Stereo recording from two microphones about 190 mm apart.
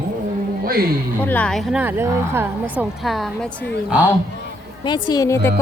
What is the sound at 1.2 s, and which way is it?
Speech, 10° left (ahead or behind).